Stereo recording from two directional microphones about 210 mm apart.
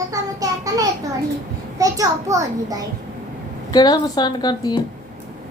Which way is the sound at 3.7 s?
20° left (ahead or behind).